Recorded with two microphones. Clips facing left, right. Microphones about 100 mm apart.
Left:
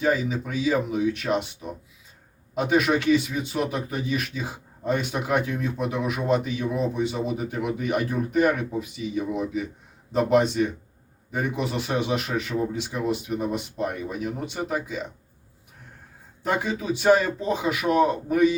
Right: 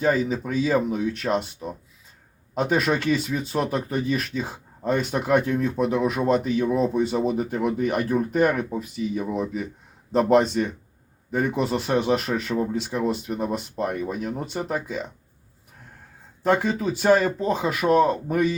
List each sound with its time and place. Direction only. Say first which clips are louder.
0.0 s speech: right 2 dB; 40° right (ahead or behind)
2.6 s speech: left 1 dB; 40° right (ahead or behind)
16.5 s speech: right 4 dB; 45° right (ahead or behind)